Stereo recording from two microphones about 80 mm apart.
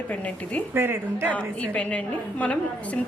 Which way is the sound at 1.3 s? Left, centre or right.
Centre.